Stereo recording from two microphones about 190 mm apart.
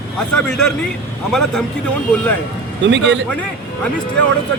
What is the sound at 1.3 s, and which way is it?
Speech, 5° left (ahead or behind).